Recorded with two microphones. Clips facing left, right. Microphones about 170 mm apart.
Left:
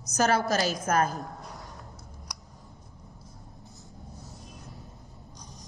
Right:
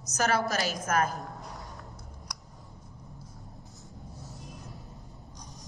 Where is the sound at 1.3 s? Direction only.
Centre (ahead or behind).